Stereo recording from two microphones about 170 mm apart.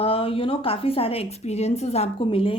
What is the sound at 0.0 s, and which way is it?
A woman's voice, 35° left (ahead or behind).